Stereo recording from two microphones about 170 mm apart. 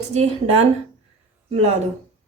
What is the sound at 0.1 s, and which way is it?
Speech, 40° right (ahead or behind).